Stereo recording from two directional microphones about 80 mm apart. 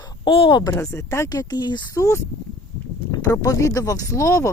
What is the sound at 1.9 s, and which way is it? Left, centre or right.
Speech, left.